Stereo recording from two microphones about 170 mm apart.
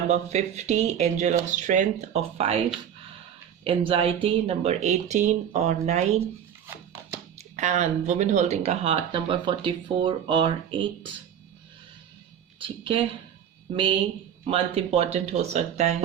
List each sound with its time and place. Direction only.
0.1 s speech: 40° right (ahead or behind)
3.6 s speech: 30° right (ahead or behind)
7.3 s speech: 40° right (ahead or behind)
12.5 s speech: 30° right (ahead or behind)